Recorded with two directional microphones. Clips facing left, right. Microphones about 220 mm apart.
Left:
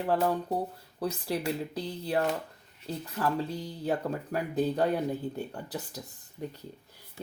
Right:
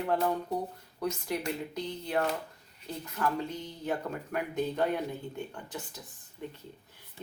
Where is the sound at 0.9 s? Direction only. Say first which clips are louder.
Left 1 dB; 35° left (ahead or behind).